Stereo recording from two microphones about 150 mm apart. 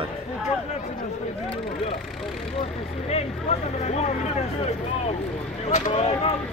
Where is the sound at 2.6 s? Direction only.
40° left (ahead or behind).